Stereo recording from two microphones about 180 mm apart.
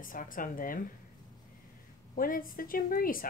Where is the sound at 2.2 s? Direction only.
50° left (ahead or behind).